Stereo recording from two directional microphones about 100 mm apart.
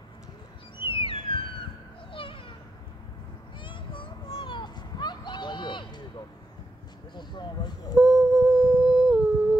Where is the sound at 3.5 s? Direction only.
55° left (ahead or behind).